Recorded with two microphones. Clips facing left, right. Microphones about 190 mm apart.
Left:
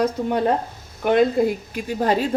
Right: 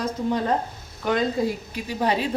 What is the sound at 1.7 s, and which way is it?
Speech, 45° left (ahead or behind).